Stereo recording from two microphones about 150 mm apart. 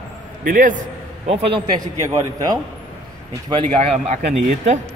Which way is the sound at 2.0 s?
25° right (ahead or behind).